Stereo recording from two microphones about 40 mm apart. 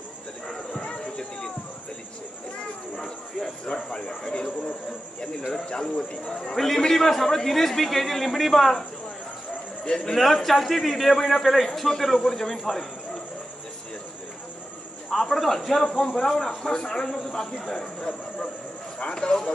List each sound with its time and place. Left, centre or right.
0.5 s a sound: centre
3.0 s cricket: centre
3.6 s a sound: left
5.5 s speech: centre
6.5 s a man's voice: centre
9.8 s a man's voice: left
10.1 s a man's voice: centre
15.0 s speech: centre